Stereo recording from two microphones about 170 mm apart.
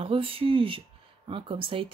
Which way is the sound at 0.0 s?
30° right (ahead or behind).